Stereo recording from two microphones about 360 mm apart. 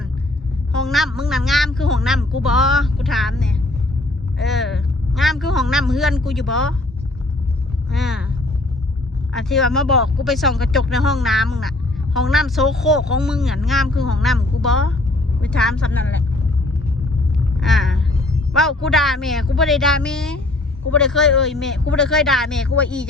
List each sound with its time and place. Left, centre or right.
0.7 s a man's voice: centre
7.9 s a man's voice: centre
9.3 s a man's voice: centre
17.3 s rumble: centre
18.5 s a man's voice: centre